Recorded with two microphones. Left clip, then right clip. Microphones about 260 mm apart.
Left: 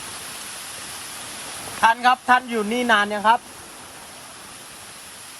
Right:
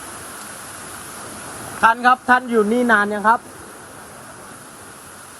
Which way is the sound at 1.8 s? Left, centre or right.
Left.